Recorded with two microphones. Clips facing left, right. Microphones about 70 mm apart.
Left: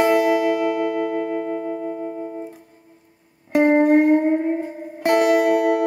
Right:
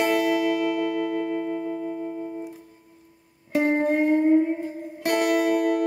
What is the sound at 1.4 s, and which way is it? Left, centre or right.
Music, left.